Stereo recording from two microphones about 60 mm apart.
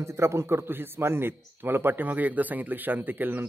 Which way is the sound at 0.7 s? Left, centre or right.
Right.